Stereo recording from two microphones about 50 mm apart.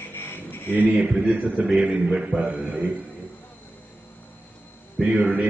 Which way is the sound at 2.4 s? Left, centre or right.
Right.